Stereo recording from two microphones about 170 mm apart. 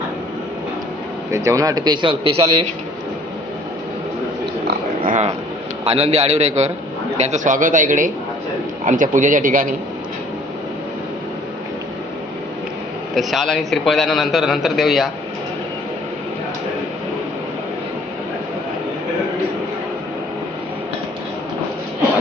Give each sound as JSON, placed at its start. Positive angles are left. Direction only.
{"t": 1.3, "sound": "a man's voice", "side_deg": -20}
{"t": 5.0, "sound": "a sound", "side_deg": -45}
{"t": 5.8, "sound": "a man's voice", "side_deg": -35}
{"t": 13.1, "sound": "a man's voice", "side_deg": 0}